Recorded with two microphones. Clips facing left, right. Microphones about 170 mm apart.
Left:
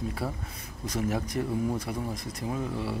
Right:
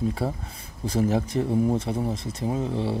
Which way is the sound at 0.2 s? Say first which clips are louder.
Right 5 dB; 25° right (ahead or behind).